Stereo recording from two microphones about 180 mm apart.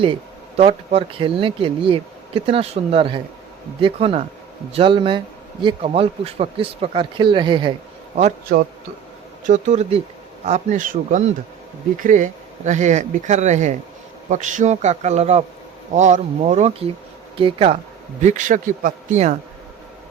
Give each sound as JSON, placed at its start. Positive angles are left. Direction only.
{"t": 0.0, "sound": "speech", "side_deg": -30}
{"t": 8.1, "sound": "a man's voice", "side_deg": -40}
{"t": 18.2, "sound": "a man's voice", "side_deg": -40}